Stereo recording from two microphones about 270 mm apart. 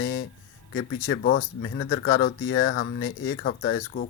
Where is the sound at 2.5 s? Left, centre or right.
Left.